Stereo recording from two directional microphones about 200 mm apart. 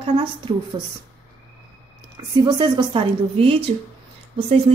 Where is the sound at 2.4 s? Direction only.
20° right (ahead or behind).